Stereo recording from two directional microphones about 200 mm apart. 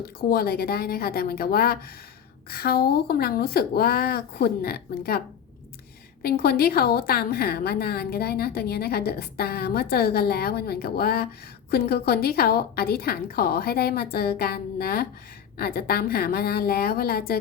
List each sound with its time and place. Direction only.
0.2 s a woman's voice: 50° left (ahead or behind)
6.2 s a woman's voice: 50° left (ahead or behind)